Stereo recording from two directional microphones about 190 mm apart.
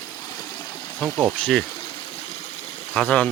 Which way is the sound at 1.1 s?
5° left (ahead or behind).